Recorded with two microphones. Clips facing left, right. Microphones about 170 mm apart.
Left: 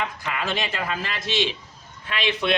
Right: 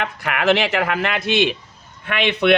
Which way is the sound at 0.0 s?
75° right (ahead or behind).